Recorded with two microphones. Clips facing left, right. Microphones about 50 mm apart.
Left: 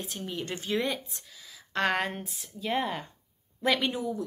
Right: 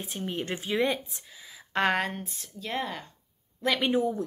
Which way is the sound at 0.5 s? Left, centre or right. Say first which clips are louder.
Right 3 dB; centre.